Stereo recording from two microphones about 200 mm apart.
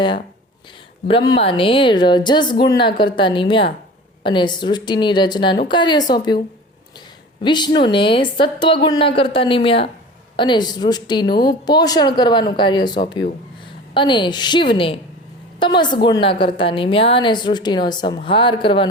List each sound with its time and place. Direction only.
1.0 s a woman's voice: 25° left (ahead or behind)
7.4 s a woman's voice: 20° left (ahead or behind)